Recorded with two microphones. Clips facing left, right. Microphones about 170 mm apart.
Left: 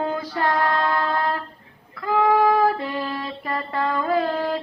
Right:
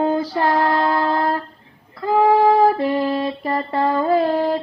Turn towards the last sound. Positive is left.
turn(degrees=-25)  # may be behind; listen again after turning